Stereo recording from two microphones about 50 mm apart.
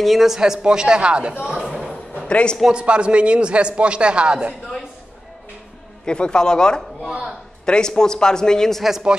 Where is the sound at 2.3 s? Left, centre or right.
Left.